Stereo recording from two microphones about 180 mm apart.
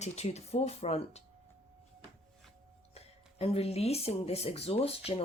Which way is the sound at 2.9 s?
35° left (ahead or behind).